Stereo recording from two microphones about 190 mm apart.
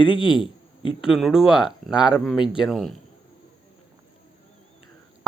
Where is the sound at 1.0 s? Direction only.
Centre (ahead or behind).